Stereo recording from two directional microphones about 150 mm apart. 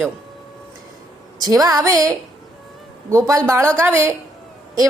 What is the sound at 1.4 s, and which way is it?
A woman's voice, 25° right (ahead or behind).